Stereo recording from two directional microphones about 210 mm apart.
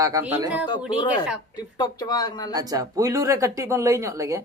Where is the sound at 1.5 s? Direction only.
20° left (ahead or behind).